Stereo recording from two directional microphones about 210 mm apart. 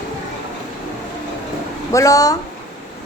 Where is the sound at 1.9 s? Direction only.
15° left (ahead or behind).